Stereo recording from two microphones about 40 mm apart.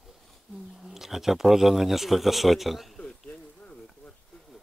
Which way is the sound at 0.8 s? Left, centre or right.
Centre.